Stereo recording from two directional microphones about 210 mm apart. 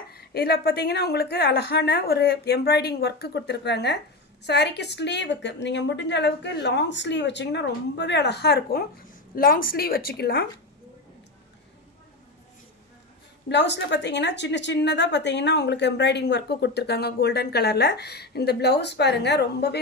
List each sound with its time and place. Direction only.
0.1 s a woman's voice: 45° left (ahead or behind)
13.5 s a woman's voice: 55° left (ahead or behind)